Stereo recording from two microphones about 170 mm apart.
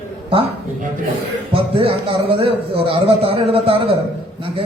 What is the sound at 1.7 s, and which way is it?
A man's voice, 35° right (ahead or behind).